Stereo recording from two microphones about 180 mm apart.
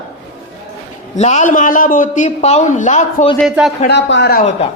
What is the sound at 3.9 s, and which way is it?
Speech, 75° left (ahead or behind).